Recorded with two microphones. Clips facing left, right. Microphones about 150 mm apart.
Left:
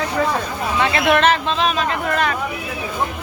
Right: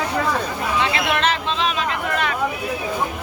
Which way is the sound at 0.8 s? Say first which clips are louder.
Left 6 dB; 55° left (ahead or behind).